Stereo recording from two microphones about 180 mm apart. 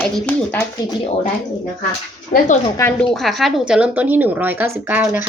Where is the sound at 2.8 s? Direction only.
15° left (ahead or behind).